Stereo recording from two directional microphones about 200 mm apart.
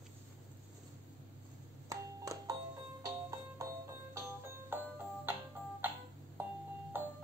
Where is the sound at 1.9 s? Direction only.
15° right (ahead or behind).